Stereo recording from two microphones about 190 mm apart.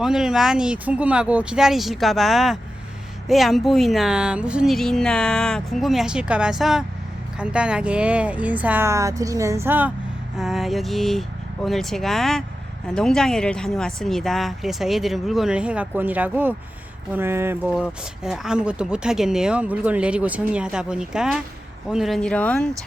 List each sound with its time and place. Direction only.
0.0 s speech: centre (ahead or behind)